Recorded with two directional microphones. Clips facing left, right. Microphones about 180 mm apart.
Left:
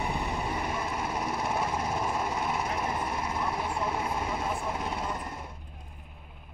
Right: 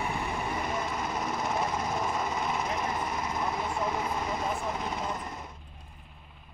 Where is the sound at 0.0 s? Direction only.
Centre (ahead or behind).